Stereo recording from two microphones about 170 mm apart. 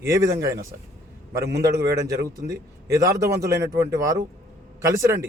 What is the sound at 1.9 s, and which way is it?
A man's voice, 20° right (ahead or behind).